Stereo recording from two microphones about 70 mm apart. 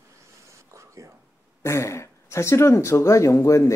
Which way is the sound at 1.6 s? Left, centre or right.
Left.